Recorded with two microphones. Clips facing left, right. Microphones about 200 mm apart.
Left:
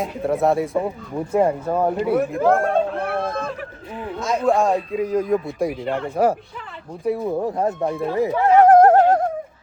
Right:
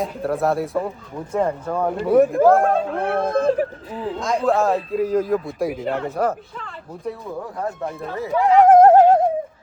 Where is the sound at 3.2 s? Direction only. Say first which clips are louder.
Right 5 dB; 50° right (ahead or behind).